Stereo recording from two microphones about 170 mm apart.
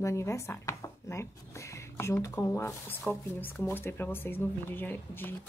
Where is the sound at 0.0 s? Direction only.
15° left (ahead or behind).